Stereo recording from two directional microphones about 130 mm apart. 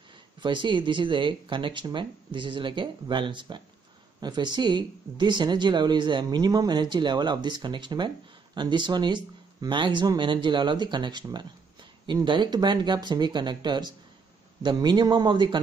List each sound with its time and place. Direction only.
0.4 s speech: 35° right (ahead or behind)